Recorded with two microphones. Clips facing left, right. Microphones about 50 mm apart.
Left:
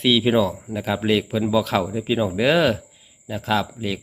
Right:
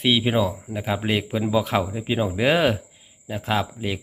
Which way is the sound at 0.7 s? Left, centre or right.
Right.